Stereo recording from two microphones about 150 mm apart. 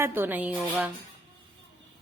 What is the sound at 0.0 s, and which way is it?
Speech, 15° right (ahead or behind).